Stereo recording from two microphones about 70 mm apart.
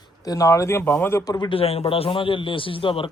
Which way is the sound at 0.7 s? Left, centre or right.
Left.